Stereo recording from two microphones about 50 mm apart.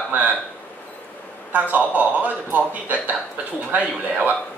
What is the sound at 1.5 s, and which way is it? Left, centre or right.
A man's voice, right.